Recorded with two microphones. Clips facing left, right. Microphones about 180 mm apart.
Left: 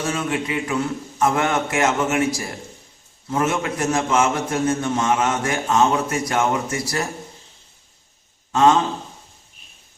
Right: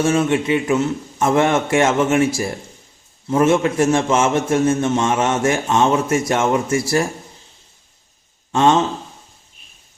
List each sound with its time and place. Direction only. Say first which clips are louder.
0.0 s a man's voice: right 7 dB; 25° right (ahead or behind)
8.5 s a man's voice: right 1 dB; 30° right (ahead or behind)